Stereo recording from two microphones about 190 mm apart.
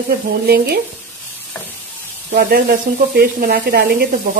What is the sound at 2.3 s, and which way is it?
Speech, 50° right (ahead or behind).